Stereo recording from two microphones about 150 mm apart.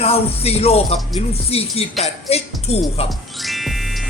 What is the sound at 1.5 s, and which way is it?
Speech, 40° left (ahead or behind).